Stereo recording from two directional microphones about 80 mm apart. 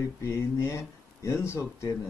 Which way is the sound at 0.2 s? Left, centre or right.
Left.